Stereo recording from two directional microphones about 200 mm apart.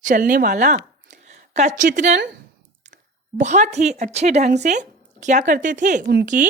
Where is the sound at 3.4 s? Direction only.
35° right (ahead or behind).